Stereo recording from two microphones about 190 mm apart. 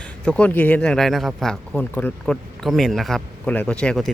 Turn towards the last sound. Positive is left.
turn(degrees=5)  # may be behind; listen again after turning